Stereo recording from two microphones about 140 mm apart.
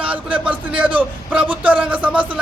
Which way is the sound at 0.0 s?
10° right (ahead or behind).